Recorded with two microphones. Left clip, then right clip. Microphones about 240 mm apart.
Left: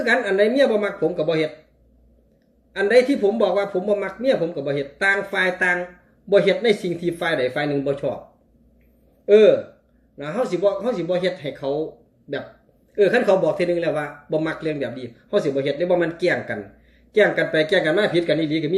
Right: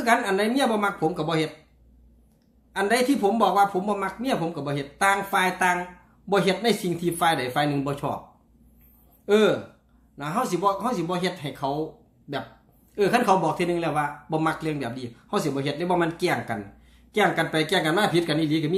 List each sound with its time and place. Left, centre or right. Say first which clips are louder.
0.0 s speech: left 4 dB; centre
2.7 s speech: left 6 dB; centre
9.2 s speech: left 7 dB; centre
12.9 s speech: left 4 dB; right